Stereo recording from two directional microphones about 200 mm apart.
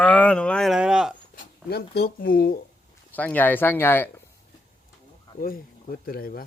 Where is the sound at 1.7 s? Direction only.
50° left (ahead or behind).